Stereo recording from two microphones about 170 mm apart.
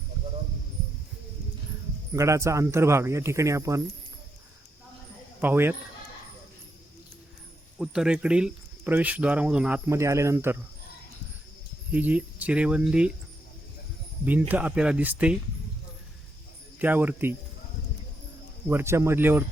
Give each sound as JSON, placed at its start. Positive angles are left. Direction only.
{"t": 2.1, "sound": "speech", "side_deg": -15}
{"t": 5.4, "sound": "speech", "side_deg": -10}
{"t": 7.8, "sound": "speech", "side_deg": -5}
{"t": 11.9, "sound": "speech", "side_deg": -10}
{"t": 14.3, "sound": "speech", "side_deg": -10}
{"t": 16.7, "sound": "speech", "side_deg": -10}
{"t": 18.7, "sound": "speech", "side_deg": -15}